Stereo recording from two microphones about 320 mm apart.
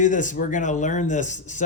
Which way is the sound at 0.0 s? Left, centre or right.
Left.